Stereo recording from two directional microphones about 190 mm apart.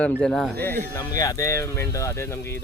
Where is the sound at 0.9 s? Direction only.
15° left (ahead or behind).